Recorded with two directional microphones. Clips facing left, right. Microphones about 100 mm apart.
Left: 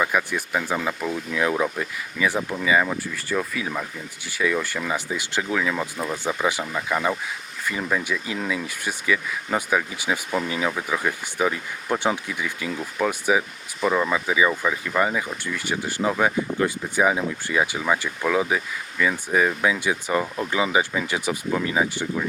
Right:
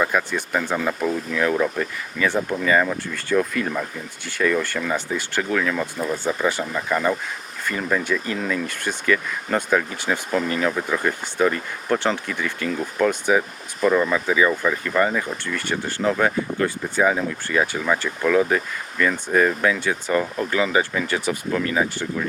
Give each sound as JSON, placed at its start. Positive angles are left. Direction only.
{"t": 0.0, "sound": "speech", "side_deg": 5}